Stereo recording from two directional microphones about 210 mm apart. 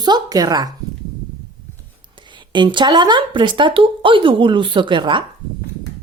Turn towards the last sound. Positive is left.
turn(degrees=-25)  # may be behind; listen again after turning